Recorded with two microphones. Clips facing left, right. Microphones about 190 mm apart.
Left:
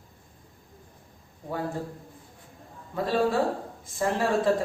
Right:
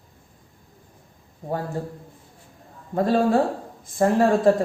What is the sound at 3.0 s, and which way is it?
Speech, 45° right (ahead or behind).